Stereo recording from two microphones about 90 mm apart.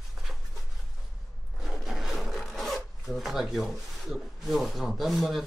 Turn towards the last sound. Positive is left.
turn(degrees=0)  # may be behind; listen again after turning